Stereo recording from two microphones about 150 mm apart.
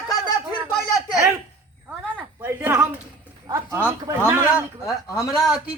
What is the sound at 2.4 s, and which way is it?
A woman's voice, 15° right (ahead or behind).